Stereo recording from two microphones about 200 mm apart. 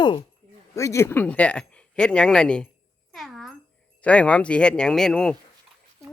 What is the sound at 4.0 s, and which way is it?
Speech, 5° left (ahead or behind).